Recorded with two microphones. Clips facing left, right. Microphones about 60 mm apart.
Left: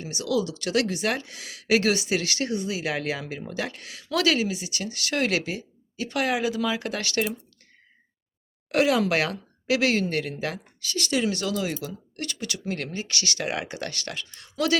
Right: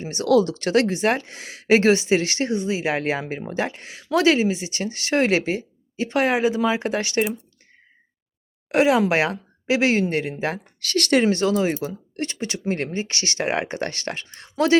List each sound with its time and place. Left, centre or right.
0.0 s speech: right
8.7 s speech: right
10.8 s speech: right
11.2 s speech: right